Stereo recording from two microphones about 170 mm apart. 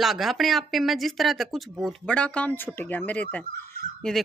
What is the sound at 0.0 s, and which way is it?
Speech, centre (ahead or behind).